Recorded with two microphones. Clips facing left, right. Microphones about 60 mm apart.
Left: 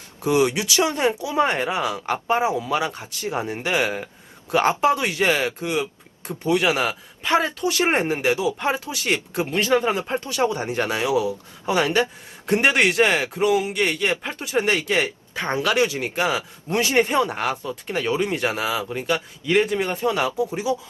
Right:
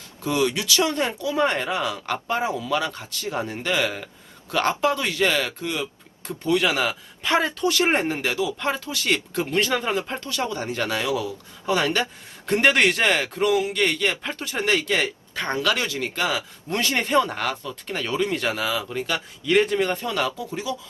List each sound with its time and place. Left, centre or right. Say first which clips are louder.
0.2 s speech: left 3 dB; left
12.5 s a man's voice: even; centre